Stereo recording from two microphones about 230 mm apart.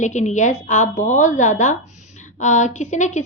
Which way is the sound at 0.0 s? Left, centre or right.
Left.